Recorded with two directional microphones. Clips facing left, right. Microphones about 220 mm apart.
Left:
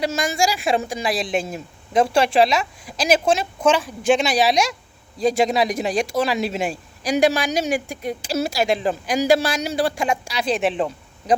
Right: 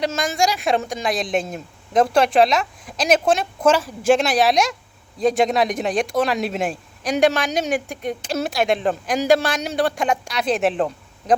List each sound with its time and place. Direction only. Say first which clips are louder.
0.0 s speech: even; 5° left (ahead or behind)